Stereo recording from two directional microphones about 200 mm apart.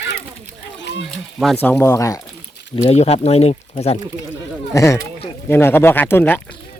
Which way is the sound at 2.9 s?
30° left (ahead or behind).